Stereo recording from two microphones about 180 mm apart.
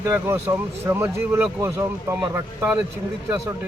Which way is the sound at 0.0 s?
15° right (ahead or behind).